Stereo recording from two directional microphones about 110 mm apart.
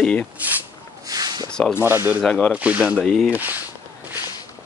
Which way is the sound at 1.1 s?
35° right (ahead or behind).